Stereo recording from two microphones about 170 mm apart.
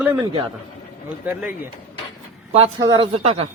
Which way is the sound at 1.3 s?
10° right (ahead or behind).